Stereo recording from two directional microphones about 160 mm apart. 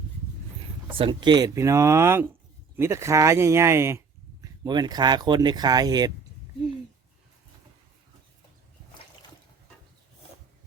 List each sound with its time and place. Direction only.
0.9 s speech: 30° right (ahead or behind)